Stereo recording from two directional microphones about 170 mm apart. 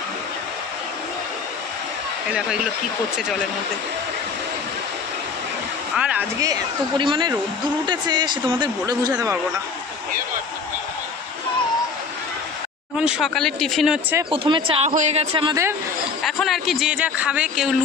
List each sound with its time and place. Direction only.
6.0 s speech: 5° right (ahead or behind)
7.0 s speech: 30° right (ahead or behind)
13.0 s a man's voice: 5° right (ahead or behind)
14.3 s speech: 30° right (ahead or behind)
14.8 s speech: 45° right (ahead or behind)
16.2 s a man's voice: centre (ahead or behind)